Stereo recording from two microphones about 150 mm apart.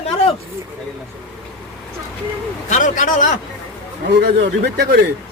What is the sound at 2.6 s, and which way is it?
Speech, 55° left (ahead or behind).